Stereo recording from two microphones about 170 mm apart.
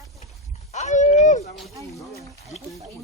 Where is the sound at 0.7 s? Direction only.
45° left (ahead or behind).